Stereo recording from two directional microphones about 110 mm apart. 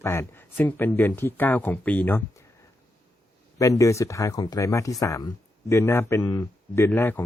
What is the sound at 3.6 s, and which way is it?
Speech, 30° left (ahead or behind).